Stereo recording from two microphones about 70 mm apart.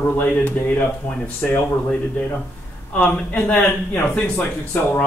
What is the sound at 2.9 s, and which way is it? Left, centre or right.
Speech, left.